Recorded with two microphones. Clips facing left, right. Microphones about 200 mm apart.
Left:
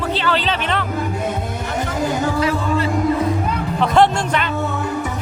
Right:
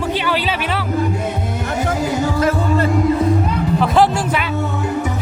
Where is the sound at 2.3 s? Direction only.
45° right (ahead or behind).